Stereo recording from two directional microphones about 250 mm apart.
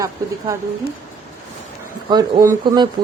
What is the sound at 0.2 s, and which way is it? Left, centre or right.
Speech, centre.